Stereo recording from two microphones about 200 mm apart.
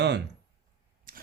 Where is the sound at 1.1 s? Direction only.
45° right (ahead or behind).